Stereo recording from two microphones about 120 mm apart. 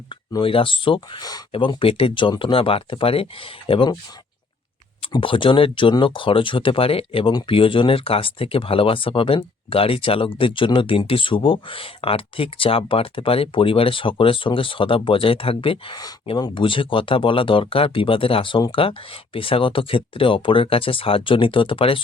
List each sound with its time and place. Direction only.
0.1 s speech: 45° left (ahead or behind)
1.5 s speech: 50° left (ahead or behind)
5.1 s speech: 45° left (ahead or behind)